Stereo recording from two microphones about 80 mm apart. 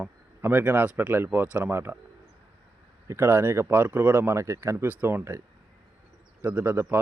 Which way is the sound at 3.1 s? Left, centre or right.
Right.